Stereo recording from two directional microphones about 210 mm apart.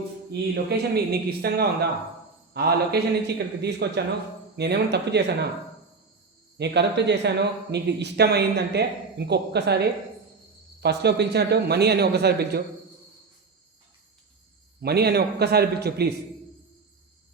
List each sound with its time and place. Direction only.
0.5 s speech: 50° right (ahead or behind)
6.6 s speech: 55° right (ahead or behind)
14.8 s speech: 50° right (ahead or behind)